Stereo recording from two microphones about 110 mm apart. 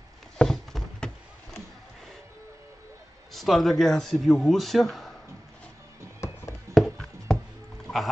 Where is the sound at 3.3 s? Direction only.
Centre (ahead or behind).